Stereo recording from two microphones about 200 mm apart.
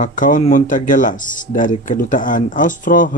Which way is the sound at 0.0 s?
40° left (ahead or behind).